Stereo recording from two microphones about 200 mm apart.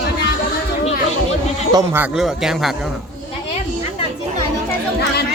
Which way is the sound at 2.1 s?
Centre (ahead or behind).